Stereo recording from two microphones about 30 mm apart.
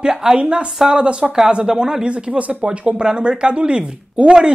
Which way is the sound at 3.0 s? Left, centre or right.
Right.